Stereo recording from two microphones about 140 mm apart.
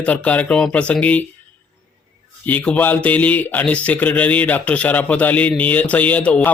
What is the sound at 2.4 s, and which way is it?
Speech, 10° left (ahead or behind).